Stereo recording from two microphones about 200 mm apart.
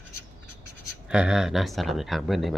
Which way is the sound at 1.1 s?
5° right (ahead or behind).